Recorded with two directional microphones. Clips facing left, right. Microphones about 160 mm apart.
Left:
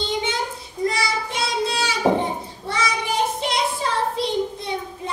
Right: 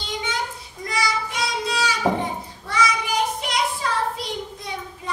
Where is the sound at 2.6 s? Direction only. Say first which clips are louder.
Right 2 dB; 25° left (ahead or behind).